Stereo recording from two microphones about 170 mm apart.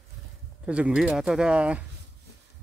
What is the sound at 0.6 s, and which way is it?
Speech, 5° right (ahead or behind).